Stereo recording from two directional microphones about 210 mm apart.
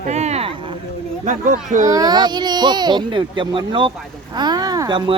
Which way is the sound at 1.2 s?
35° right (ahead or behind).